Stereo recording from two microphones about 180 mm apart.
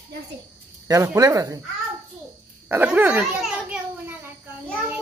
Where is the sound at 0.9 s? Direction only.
20° right (ahead or behind).